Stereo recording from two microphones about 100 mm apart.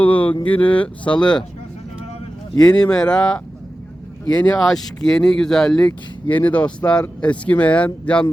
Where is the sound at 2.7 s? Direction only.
10° left (ahead or behind).